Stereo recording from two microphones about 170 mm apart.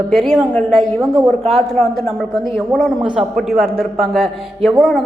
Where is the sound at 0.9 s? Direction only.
20° right (ahead or behind).